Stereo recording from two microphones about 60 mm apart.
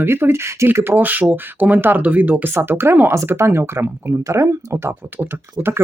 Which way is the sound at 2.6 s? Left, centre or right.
Right.